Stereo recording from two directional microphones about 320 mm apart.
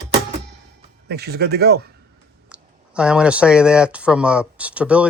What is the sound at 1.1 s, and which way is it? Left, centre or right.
Speech, right.